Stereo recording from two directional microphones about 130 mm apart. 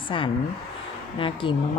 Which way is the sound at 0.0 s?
40° left (ahead or behind).